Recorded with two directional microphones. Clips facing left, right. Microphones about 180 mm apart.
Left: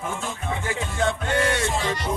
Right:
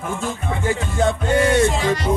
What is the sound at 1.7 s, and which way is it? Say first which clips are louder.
Music: right 6 dB; 90° right.